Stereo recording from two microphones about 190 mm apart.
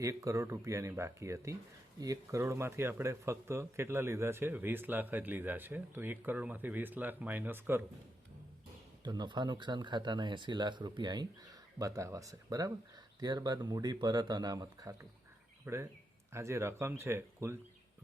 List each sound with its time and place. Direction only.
0.0 s speech: 15° right (ahead or behind)
9.0 s speech: 20° right (ahead or behind)